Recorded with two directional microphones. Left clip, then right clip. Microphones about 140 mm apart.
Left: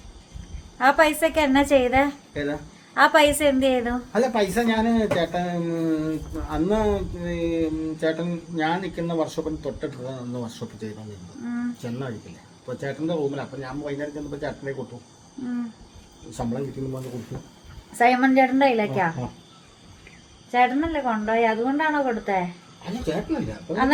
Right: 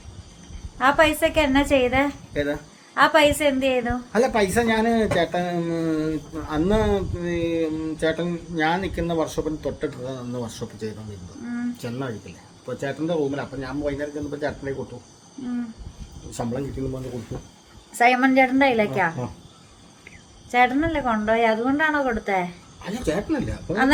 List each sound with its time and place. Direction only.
0.8 s a woman's voice: 15° left (ahead or behind)
2.3 s speech: 30° right (ahead or behind)
2.9 s a woman's voice: 15° left (ahead or behind)
4.1 s speech: 25° right (ahead or behind)
16.3 s speech: 30° right (ahead or behind)
17.9 s a woman's voice: 10° left (ahead or behind)
20.5 s a woman's voice: 5° left (ahead or behind)
22.8 s speech: 20° right (ahead or behind)